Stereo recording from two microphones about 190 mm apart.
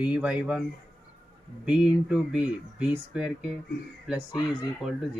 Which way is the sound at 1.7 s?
5° right (ahead or behind).